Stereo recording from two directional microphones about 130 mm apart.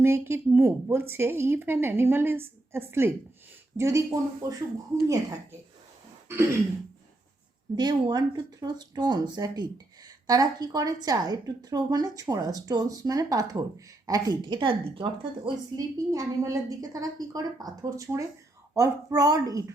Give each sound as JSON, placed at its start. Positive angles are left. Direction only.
{"t": 0.0, "sound": "a woman's voice", "side_deg": -20}
{"t": 6.2, "sound": "throat clearing", "side_deg": -20}
{"t": 7.8, "sound": "a woman's voice", "side_deg": -35}